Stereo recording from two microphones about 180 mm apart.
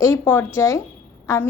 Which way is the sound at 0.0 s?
15° left (ahead or behind).